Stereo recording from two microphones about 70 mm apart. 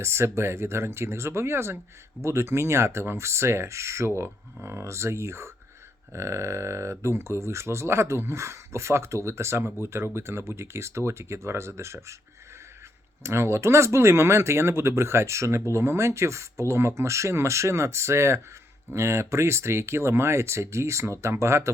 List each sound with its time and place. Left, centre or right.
0.0 s speech: right
13.2 s speech: right